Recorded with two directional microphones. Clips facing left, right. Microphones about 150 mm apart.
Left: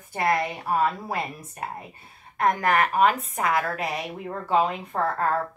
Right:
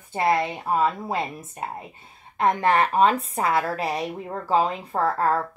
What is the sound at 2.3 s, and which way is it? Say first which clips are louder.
Speech: right 2 dB; 25° right (ahead or behind).